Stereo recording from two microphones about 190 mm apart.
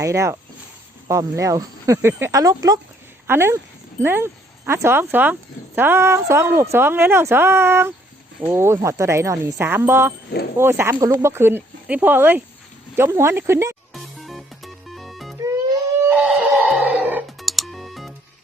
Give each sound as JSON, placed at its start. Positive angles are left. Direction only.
{"t": 0.0, "sound": "speech", "side_deg": -15}
{"t": 13.9, "sound": "music", "side_deg": 0}
{"t": 15.7, "sound": "a sound", "side_deg": -10}